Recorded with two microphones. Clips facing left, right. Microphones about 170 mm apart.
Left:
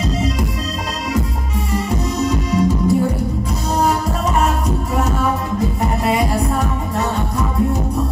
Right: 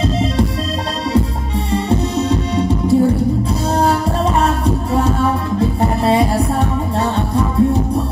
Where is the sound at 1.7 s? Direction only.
30° right (ahead or behind).